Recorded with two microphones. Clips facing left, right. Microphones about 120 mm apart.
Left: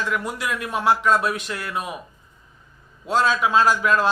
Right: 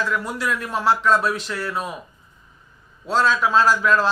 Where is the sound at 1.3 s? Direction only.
50° left (ahead or behind).